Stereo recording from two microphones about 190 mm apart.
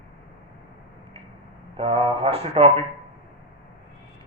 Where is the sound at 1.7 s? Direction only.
30° right (ahead or behind).